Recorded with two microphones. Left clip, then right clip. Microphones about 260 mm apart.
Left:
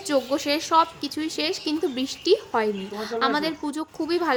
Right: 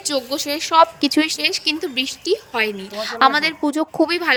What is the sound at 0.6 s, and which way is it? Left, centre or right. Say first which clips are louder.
A woman's voice: right 10 dB; right.